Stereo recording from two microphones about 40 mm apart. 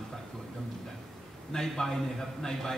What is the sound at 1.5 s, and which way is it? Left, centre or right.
A man's voice, centre.